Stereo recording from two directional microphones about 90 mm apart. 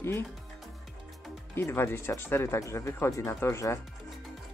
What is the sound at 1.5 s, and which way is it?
Speech, 25° left (ahead or behind).